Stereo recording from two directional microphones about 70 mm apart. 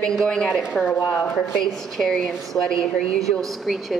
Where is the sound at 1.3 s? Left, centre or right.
Centre.